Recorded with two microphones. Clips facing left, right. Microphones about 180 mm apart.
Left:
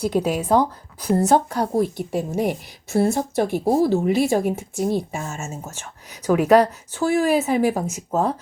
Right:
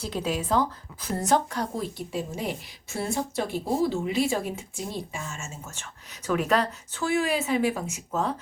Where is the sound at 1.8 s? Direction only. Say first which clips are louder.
Left 9 dB; 55° left (ahead or behind).